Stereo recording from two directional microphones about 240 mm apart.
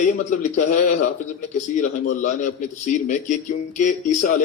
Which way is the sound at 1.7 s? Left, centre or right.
Left.